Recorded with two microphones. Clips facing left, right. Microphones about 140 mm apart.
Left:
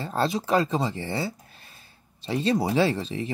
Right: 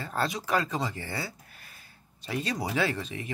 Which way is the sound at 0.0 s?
25° left (ahead or behind).